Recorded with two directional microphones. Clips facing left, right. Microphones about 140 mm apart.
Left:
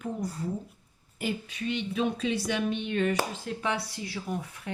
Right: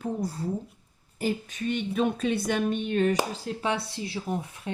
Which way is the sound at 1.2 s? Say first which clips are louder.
Right 3 dB; 45° right (ahead or behind).